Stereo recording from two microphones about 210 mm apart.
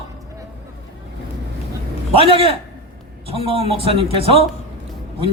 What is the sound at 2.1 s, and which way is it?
A man's voice, 25° right (ahead or behind).